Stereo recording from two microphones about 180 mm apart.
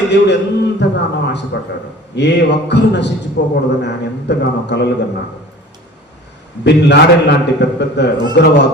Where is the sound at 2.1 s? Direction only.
70° left (ahead or behind).